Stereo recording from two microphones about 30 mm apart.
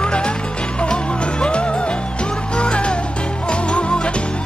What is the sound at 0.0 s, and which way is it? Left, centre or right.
Music, left.